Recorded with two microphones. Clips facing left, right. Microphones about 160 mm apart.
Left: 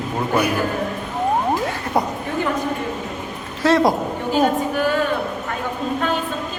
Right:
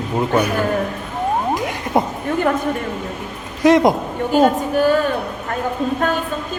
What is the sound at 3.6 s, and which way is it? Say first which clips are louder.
Speech: right 3 dB; 20° right (ahead or behind).